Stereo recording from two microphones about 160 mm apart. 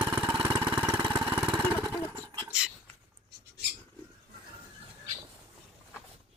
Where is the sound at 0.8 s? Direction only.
30° right (ahead or behind).